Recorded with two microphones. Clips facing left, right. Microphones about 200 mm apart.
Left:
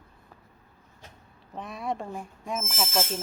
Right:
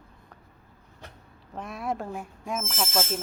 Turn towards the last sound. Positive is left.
turn(degrees=5)  # may be behind; listen again after turning